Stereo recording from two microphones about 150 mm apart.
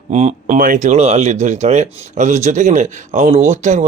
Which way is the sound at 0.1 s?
50° right (ahead or behind).